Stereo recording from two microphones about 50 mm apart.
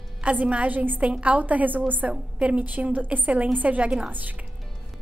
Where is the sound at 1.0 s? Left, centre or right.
Right.